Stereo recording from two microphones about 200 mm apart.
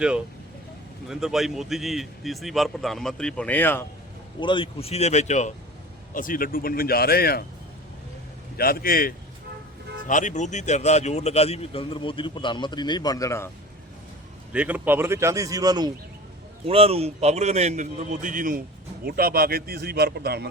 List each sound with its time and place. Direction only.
1.0 s a man's voice: centre (ahead or behind)
4.4 s speech: 25° left (ahead or behind); by 7.4 s 50° left (ahead or behind)
8.5 s speech: 50° left (ahead or behind); by 13.5 s 15° left (ahead or behind)
14.5 s speech: 5° right (ahead or behind)
16.6 s a man's voice: 30° right (ahead or behind); by 20.5 s 55° right (ahead or behind)